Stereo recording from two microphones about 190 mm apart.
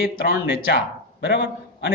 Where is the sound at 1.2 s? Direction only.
60° left (ahead or behind).